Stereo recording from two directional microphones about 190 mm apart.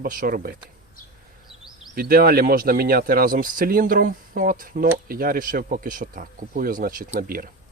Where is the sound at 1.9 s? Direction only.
55° right (ahead or behind).